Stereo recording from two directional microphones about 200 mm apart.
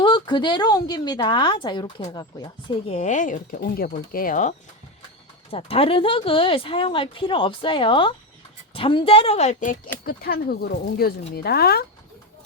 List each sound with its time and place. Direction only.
0.0 s a woman's voice: 20° left (ahead or behind); by 4.5 s 40° left (ahead or behind)
5.5 s a woman's voice: 30° left (ahead or behind); by 11.9 s 50° left (ahead or behind)